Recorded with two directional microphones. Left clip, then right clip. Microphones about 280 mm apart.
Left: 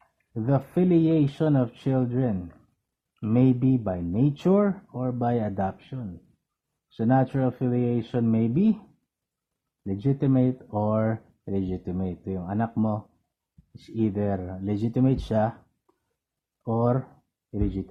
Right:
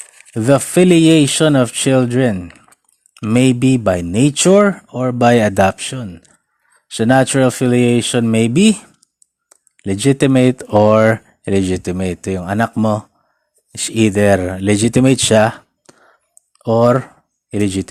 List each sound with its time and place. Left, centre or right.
0.3 s speech: right
9.8 s speech: right
11.5 s speech: right
15.3 s speech: right
16.8 s speech: right